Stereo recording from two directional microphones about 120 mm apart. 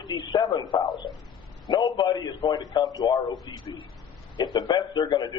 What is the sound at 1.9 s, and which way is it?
A man's voice, 35° left (ahead or behind).